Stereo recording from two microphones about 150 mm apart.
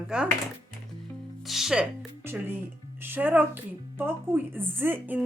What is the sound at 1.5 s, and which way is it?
Speech, centre (ahead or behind).